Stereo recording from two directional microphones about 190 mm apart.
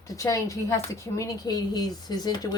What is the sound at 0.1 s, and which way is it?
Speech, 15° left (ahead or behind).